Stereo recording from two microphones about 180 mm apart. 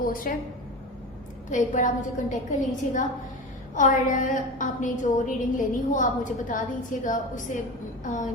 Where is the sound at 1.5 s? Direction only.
45° left (ahead or behind).